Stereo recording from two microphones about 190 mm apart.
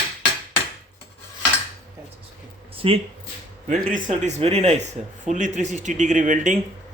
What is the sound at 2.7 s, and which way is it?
Speech, 30° right (ahead or behind).